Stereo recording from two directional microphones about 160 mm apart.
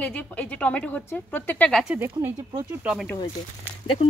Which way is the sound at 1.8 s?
10° right (ahead or behind).